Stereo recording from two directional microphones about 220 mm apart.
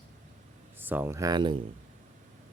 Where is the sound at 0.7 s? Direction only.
10° right (ahead or behind).